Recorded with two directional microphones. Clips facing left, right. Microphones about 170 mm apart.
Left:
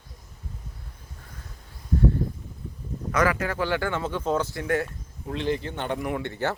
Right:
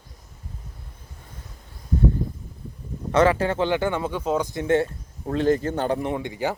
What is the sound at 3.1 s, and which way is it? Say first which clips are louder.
Speech: right 5 dB; 30° right (ahead or behind).